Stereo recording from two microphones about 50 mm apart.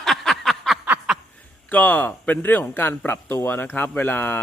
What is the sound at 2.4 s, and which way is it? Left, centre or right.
Speech, left.